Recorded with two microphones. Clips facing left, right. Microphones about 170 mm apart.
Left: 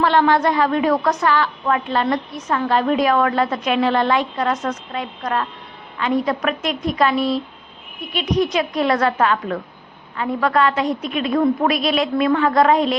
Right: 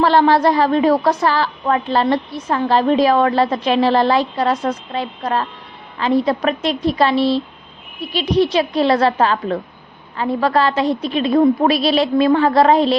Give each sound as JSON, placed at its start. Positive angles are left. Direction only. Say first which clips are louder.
{"t": 0.0, "sound": "a woman's voice", "louder": "right 3 dB", "side_deg": -35}